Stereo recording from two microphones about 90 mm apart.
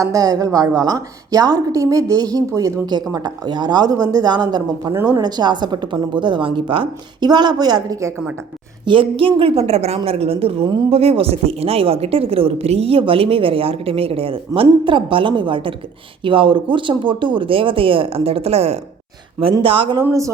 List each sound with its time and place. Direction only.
0.0 s a woman's voice: 40° right (ahead or behind); by 7.3 s 65° right (ahead or behind)
7.3 s a woman's voice: 50° right (ahead or behind)
8.8 s a woman's voice: 70° right (ahead or behind); by 18.8 s 90° right
19.6 s speech: 70° right (ahead or behind)